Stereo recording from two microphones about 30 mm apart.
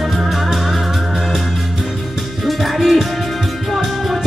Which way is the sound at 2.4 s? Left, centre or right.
Centre.